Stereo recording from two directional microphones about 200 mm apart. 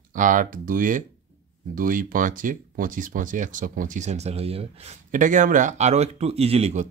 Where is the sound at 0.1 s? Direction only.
40° right (ahead or behind).